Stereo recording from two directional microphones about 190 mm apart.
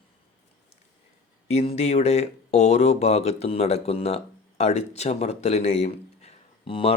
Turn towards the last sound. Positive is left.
turn(degrees=30)  # may be behind; listen again after turning